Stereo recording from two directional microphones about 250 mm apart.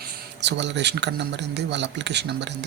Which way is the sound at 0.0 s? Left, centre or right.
Right.